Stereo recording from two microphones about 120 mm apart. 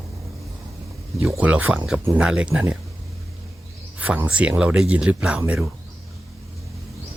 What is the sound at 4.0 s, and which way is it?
Speech, 10° right (ahead or behind).